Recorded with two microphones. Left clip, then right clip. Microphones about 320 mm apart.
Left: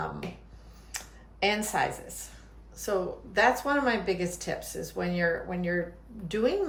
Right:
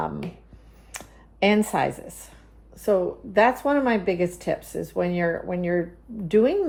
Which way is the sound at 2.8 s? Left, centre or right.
Centre.